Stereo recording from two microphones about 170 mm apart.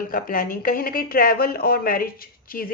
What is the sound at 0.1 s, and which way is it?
A woman's voice, 55° left (ahead or behind).